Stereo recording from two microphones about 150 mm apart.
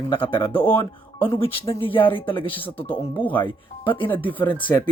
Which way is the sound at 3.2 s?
10° left (ahead or behind).